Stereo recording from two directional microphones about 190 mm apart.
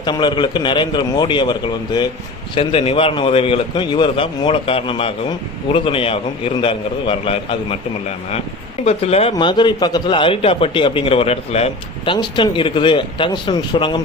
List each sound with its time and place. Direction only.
0.0 s a man's voice: 25° left (ahead or behind)
8.8 s a man's voice: 35° left (ahead or behind)